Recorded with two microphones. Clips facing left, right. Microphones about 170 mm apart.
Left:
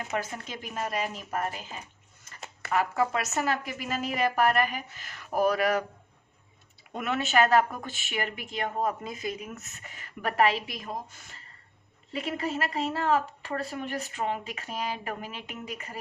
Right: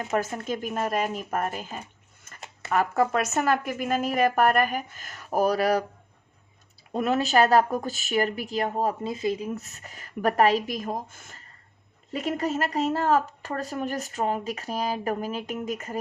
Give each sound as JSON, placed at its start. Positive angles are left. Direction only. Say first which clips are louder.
{"t": 0.1, "sound": "speech", "louder": "right 9 dB", "side_deg": -45}
{"t": 6.9, "sound": "speech", "louder": "right 4 dB", "side_deg": -35}